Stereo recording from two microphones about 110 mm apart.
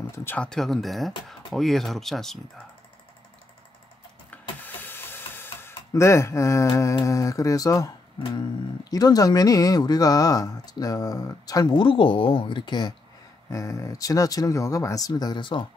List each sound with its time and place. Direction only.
0.1 s speech: 20° left (ahead or behind)
0.4 s speech: 5° left (ahead or behind)
4.3 s power windows: 15° left (ahead or behind)
7.1 s speech: 30° left (ahead or behind)
8.9 s speech: 35° left (ahead or behind)
13.5 s speech: 30° left (ahead or behind); by 15.6 s 45° left (ahead or behind)